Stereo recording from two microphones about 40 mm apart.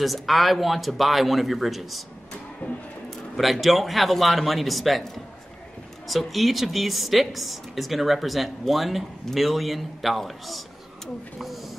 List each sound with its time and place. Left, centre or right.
0.0 s a woman's voice: centre
3.5 s a woman's voice: centre
6.0 s a woman's voice: centre